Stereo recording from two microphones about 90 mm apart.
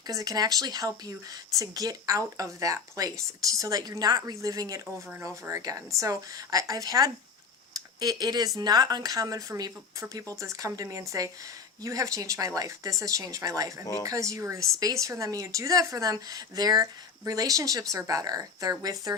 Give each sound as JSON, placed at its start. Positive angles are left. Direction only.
{"t": 0.1, "sound": "speech", "side_deg": -40}
{"t": 7.7, "sound": "a sound", "side_deg": -45}
{"t": 8.5, "sound": "speech", "side_deg": -45}